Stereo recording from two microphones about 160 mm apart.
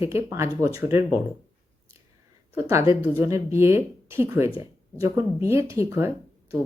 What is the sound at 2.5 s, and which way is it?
Speech, 20° right (ahead or behind).